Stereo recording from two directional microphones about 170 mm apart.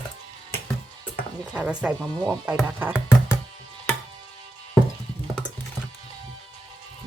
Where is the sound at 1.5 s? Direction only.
5° right (ahead or behind).